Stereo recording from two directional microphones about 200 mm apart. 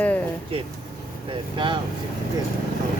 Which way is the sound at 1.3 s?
25° right (ahead or behind).